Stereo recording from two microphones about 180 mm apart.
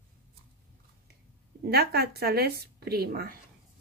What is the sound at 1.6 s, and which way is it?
A woman's voice, 60° right (ahead or behind).